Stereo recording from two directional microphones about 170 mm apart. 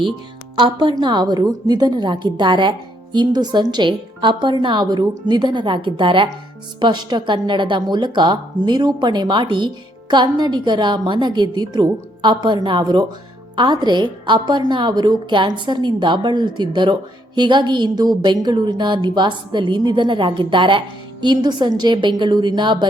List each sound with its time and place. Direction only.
0.6 s a woman's voice: 30° right (ahead or behind)